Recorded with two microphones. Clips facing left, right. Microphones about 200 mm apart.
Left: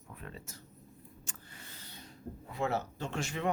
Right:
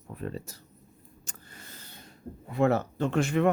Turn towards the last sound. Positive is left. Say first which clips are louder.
# right 10 dB
turn(degrees=-55)  # may be behind; listen again after turning